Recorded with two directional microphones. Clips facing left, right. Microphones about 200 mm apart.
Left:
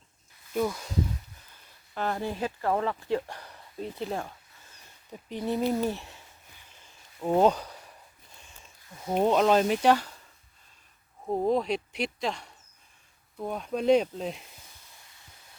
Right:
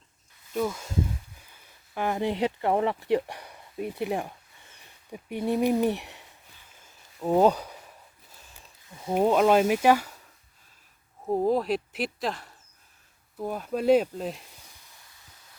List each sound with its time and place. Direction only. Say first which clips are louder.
0.5 s speech: even; centre (ahead or behind)
2.0 s speech: right 4 dB; 15° right (ahead or behind)
6.8 s a sound: right 1 dB; 5° right (ahead or behind)
8.4 s speech: even; centre (ahead or behind)
11.3 s speech: right 2 dB; 5° right (ahead or behind)